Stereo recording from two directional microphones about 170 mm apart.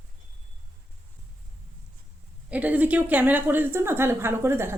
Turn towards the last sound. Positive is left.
turn(degrees=-15)  # may be behind; listen again after turning